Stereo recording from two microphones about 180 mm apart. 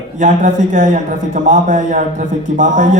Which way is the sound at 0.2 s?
45° right (ahead or behind).